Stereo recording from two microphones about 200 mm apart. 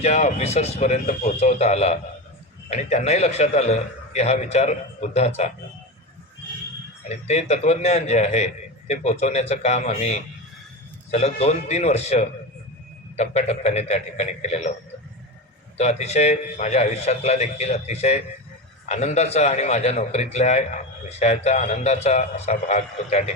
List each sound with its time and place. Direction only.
0.0 s a man's voice: 35° left (ahead or behind)
7.1 s a man's voice: 35° left (ahead or behind)
15.8 s a man's voice: 35° left (ahead or behind)